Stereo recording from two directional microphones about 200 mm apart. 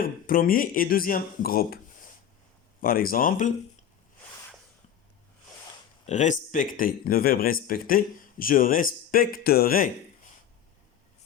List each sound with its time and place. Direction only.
0.0 s speech: 45° left (ahead or behind)
2.8 s speech: 45° left (ahead or behind)
6.1 s speech: 35° left (ahead or behind)